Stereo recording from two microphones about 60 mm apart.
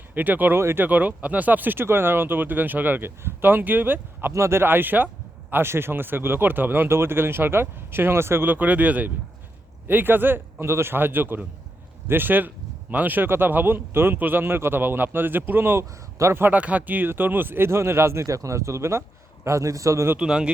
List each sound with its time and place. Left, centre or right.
0.1 s speech: right
0.6 s speech: right
0.9 s speech: right
4.3 s speech: right
4.6 s speech: right
16.6 s speech: right
19.5 s a man's voice: right
20.1 s speech: centre